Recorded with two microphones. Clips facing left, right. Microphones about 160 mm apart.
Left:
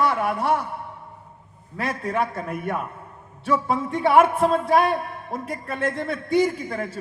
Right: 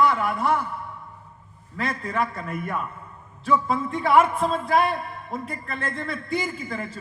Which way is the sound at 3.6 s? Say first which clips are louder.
Left 2 dB; 70° left (ahead or behind).